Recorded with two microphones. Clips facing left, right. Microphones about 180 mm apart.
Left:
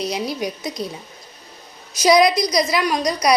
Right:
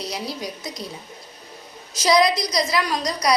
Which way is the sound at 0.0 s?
20° left (ahead or behind).